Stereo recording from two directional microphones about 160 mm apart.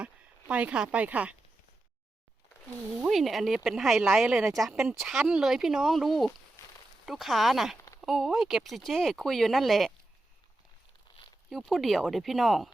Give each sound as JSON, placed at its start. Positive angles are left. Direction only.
{"t": 0.0, "sound": "speech", "side_deg": -10}
{"t": 3.0, "sound": "speech", "side_deg": 0}
{"t": 11.1, "sound": "zipper", "side_deg": 25}
{"t": 11.4, "sound": "speech", "side_deg": 0}